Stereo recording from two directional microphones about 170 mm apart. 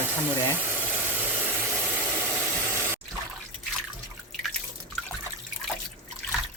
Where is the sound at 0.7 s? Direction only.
10° right (ahead or behind).